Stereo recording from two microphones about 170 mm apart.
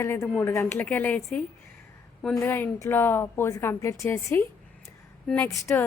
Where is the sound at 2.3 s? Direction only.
15° left (ahead or behind).